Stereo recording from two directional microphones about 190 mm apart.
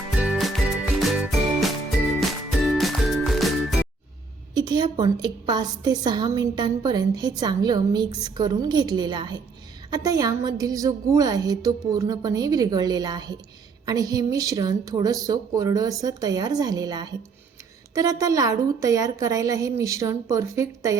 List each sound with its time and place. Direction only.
0.2 s music: centre (ahead or behind)
4.5 s a woman's voice: 20° right (ahead or behind)